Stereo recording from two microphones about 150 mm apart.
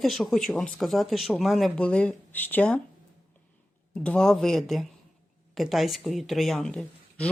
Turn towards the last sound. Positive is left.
turn(degrees=5)  # may be behind; listen again after turning